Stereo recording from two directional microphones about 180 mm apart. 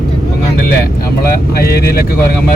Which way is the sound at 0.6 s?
55° left (ahead or behind).